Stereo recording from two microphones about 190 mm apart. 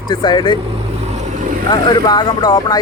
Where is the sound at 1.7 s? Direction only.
20° left (ahead or behind).